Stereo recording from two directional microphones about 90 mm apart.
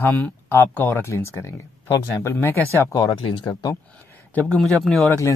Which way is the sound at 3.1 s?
65° left (ahead or behind).